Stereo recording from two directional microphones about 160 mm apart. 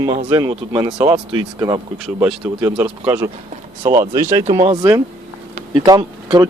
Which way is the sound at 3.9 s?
20° right (ahead or behind).